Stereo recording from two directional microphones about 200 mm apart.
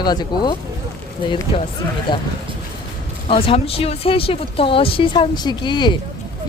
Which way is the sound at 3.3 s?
25° left (ahead or behind).